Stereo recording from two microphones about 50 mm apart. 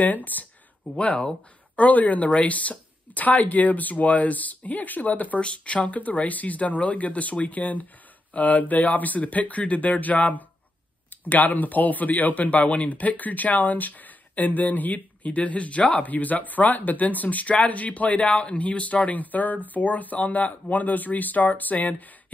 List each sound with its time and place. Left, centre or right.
0.0 s a man's voice: left